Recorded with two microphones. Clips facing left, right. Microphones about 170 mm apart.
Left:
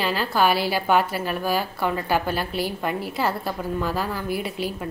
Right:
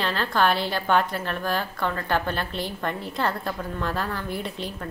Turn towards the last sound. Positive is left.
turn(degrees=5)  # may be behind; listen again after turning